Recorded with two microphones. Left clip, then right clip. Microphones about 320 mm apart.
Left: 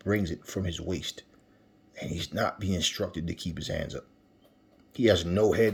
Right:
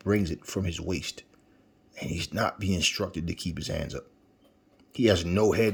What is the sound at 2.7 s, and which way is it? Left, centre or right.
Speech, right.